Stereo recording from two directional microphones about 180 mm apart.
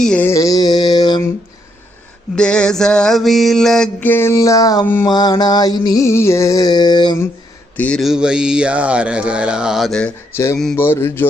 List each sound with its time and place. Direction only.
0.0 s mantra: 5° left (ahead or behind); by 1.3 s 25° left (ahead or behind)
2.3 s mantra: 5° left (ahead or behind); by 7.2 s 25° left (ahead or behind)
7.8 s a sound: 5° left (ahead or behind)
10.3 s mantra: 15° left (ahead or behind)